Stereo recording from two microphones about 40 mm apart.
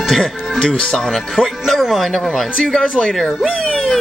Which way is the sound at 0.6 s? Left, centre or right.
Centre.